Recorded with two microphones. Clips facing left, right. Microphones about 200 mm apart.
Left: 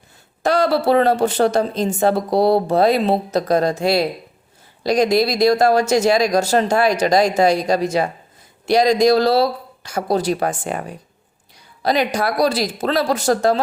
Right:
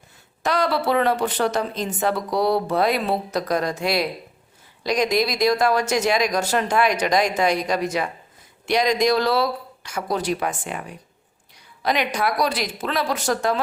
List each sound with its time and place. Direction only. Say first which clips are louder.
0.4 s speech: left 5 dB; 30° left (ahead or behind)
11.8 s speech: left 4 dB; 35° left (ahead or behind)